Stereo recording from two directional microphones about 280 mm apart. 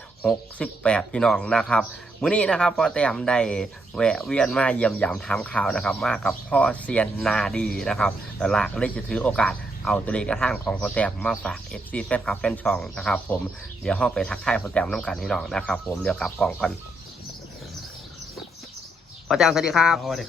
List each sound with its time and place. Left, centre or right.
0.2 s speech: centre
19.3 s speech: centre